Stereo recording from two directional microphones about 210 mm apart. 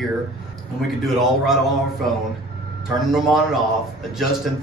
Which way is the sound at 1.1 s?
Centre (ahead or behind).